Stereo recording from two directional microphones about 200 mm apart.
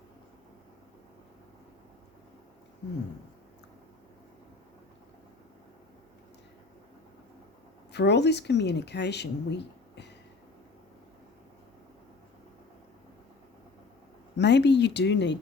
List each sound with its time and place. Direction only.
7.9 s speech: 60° left (ahead or behind)
14.3 s speech: 60° left (ahead or behind)